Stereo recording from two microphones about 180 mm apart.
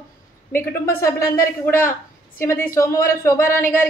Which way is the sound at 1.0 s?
15° left (ahead or behind).